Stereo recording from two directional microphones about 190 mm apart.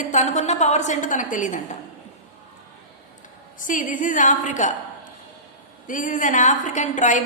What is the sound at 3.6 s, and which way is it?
A woman's voice, 45° left (ahead or behind).